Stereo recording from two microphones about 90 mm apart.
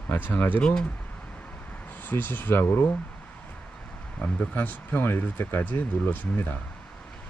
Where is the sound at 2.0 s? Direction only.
20° left (ahead or behind).